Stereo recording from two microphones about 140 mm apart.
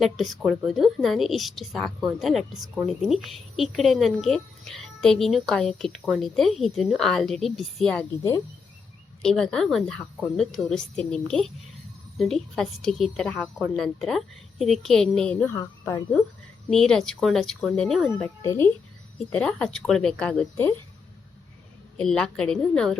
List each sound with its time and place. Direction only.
0.0 s a woman's voice: centre (ahead or behind)
9.2 s a woman's voice: 5° left (ahead or behind)
15.5 s a woman's voice: 25° left (ahead or behind)
16.6 s a woman's voice: 5° left (ahead or behind)
18.4 s speech: 20° left (ahead or behind)
19.3 s speech: 5° left (ahead or behind)
21.9 s a woman's voice: 5° left (ahead or behind)